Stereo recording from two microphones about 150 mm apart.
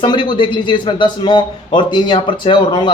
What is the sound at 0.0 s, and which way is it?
A man's voice, 30° left (ahead or behind).